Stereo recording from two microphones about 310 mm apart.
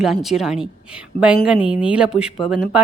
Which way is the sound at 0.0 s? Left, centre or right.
Centre.